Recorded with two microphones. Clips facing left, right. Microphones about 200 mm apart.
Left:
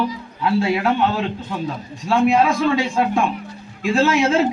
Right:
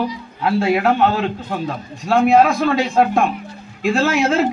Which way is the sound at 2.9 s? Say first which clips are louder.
Right 4 dB; 40° right (ahead or behind).